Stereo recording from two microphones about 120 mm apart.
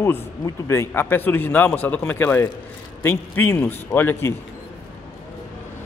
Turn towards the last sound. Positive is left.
turn(degrees=20)  # may be behind; listen again after turning